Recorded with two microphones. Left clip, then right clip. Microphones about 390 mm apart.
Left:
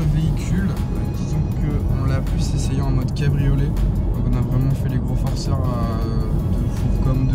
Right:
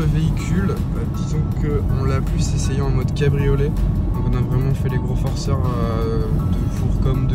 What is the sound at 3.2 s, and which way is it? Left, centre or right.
Speech, centre.